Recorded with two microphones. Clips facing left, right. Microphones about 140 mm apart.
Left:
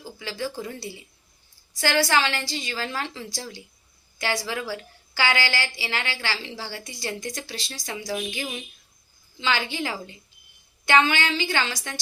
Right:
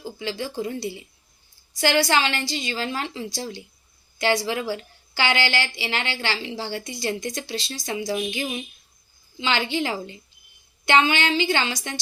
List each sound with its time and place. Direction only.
0.2 s a woman's voice: 20° right (ahead or behind)